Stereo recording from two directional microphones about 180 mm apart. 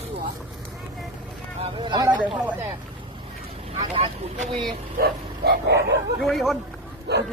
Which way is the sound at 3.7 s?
30° right (ahead or behind).